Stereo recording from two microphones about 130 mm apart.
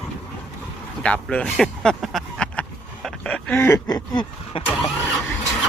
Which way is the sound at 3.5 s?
20° left (ahead or behind).